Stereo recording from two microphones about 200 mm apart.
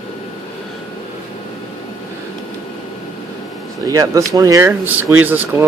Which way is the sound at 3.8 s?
15° right (ahead or behind).